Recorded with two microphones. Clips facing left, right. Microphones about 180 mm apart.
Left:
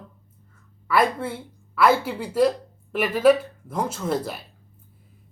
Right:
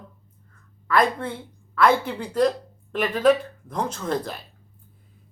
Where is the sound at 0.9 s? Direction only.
5° left (ahead or behind).